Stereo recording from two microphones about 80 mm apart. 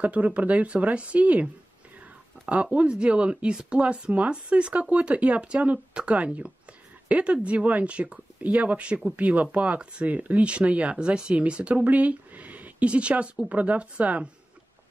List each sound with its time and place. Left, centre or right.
0.0 s speech: centre